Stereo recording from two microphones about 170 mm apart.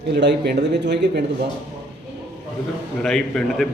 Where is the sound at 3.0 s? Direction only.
5° left (ahead or behind).